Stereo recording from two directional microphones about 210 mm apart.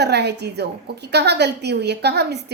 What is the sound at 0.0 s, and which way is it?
A woman's voice, 50° right (ahead or behind).